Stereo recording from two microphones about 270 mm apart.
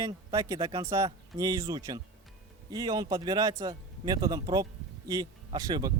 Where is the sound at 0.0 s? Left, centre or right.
Centre.